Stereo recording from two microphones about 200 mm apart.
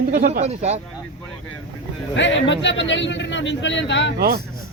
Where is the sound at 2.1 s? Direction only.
65° left (ahead or behind).